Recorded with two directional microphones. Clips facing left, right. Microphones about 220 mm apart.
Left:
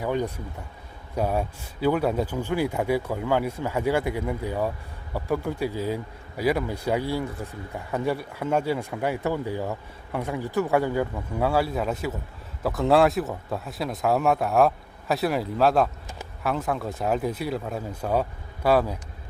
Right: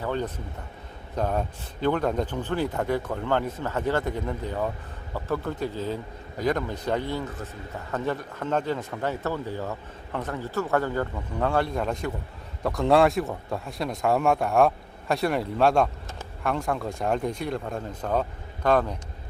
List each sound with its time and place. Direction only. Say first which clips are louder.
0.0 s a man's voice: left 2 dB; 10° left (ahead or behind)